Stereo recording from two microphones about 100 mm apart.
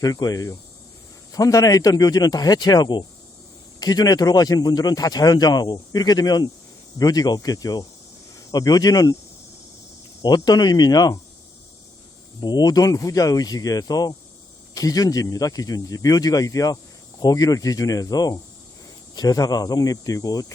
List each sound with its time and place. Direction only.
0.0 s speech: 40° left (ahead or behind)
10.2 s speech: 40° left (ahead or behind)
12.4 s speech: 45° left (ahead or behind)